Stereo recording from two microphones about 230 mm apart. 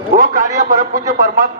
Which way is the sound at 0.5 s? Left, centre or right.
Right.